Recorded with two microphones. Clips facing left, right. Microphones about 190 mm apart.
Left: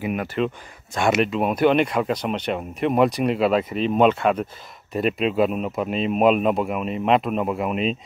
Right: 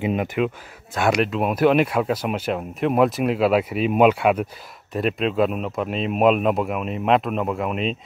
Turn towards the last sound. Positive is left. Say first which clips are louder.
# left 1 dB
turn(degrees=0)  # may be behind; listen again after turning